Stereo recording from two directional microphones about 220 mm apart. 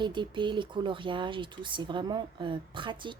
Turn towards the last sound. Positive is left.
turn(degrees=-20)  # may be behind; listen again after turning